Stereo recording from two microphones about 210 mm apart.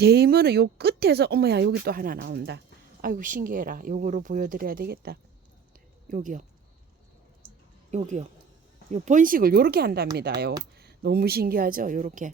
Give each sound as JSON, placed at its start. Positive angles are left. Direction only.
{"t": 0.0, "sound": "speech", "side_deg": -50}
{"t": 7.4, "sound": "music", "side_deg": -35}
{"t": 8.9, "sound": "speech", "side_deg": -35}